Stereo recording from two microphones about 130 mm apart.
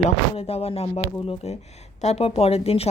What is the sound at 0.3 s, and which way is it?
Speech, 50° left (ahead or behind).